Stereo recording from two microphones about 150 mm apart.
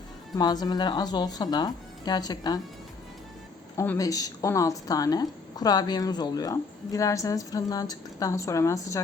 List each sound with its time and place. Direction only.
0.3 s speech: 25° left (ahead or behind)
3.8 s speech: 20° left (ahead or behind)